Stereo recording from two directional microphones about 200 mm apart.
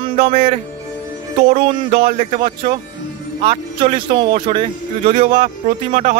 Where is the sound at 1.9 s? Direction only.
45° right (ahead or behind).